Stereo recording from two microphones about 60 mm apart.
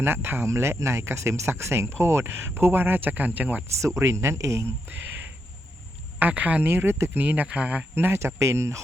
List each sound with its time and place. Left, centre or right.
0.0 s speech: right
3.8 s speech: right
4.9 s speech: right
7.2 s speech: right
7.9 s speech: right
8.2 s speech: right